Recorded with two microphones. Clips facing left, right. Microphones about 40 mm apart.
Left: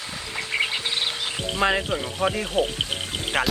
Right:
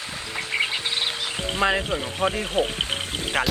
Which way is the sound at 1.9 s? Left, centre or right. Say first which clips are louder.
Even; right.